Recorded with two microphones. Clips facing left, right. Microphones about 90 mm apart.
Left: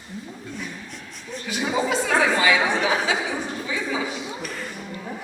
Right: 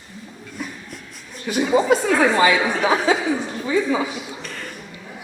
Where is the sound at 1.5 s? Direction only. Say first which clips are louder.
Right 7 dB; 45° right (ahead or behind).